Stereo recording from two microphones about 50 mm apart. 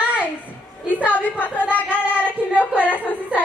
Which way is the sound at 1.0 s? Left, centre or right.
Left.